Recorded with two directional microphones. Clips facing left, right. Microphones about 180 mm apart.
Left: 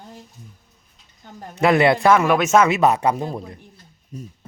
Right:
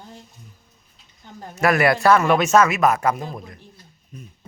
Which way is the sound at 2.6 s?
20° left (ahead or behind).